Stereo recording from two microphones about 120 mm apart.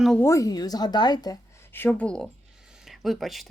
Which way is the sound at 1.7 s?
15° left (ahead or behind).